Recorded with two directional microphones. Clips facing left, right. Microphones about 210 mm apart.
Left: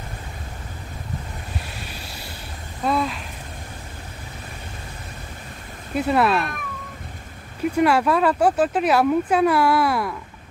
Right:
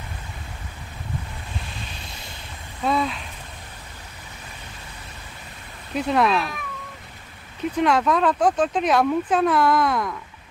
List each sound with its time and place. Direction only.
2.8 s a sound: centre (ahead or behind)
5.9 s speech: 5° left (ahead or behind)
7.7 s speech: 5° left (ahead or behind)